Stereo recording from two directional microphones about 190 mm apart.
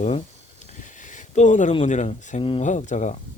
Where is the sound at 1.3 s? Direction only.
40° left (ahead or behind).